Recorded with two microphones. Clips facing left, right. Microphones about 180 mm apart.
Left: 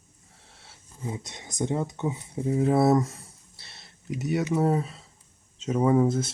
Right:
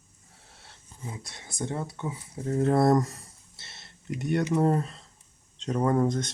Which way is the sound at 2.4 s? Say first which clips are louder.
Left 1 dB; 5° left (ahead or behind).